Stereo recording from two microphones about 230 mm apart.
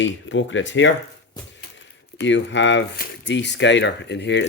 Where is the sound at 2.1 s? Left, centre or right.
Left.